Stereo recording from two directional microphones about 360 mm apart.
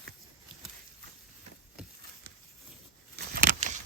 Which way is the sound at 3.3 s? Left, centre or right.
Right.